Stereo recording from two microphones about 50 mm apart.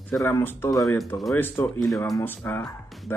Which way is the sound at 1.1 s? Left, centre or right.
Left.